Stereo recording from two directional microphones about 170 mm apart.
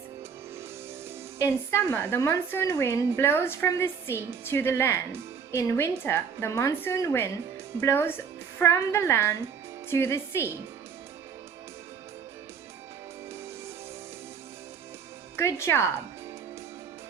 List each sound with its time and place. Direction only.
1.4 s a woman's voice: 15° left (ahead or behind)
15.4 s a woman's voice: 15° left (ahead or behind)